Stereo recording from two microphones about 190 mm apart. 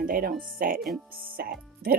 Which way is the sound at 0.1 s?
50° right (ahead or behind).